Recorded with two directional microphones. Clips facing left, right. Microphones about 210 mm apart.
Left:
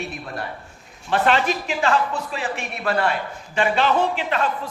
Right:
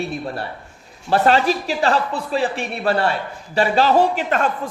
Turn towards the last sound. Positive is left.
turn(degrees=-45)  # may be behind; listen again after turning